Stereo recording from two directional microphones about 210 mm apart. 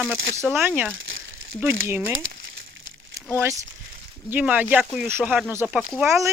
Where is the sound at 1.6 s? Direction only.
10° right (ahead or behind).